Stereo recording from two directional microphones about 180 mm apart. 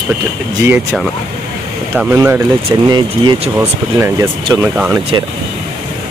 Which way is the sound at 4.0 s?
15° right (ahead or behind).